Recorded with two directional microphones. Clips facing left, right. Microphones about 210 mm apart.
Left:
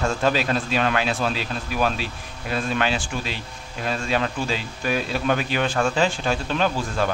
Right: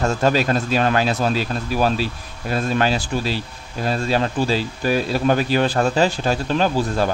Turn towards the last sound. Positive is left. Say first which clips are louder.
# right 4 dB
turn(degrees=-35)  # may be behind; listen again after turning